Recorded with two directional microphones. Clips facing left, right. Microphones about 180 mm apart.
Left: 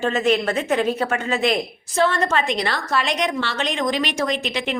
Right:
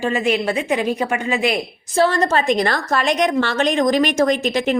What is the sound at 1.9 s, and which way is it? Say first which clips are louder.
A woman's voice: right 3 dB; 35° right (ahead or behind).